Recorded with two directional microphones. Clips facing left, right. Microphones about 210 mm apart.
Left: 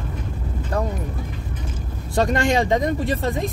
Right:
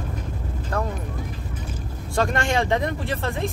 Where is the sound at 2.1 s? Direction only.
15° left (ahead or behind).